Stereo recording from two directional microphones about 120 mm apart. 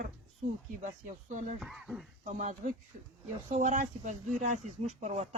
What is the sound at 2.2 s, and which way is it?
Speech, 85° right.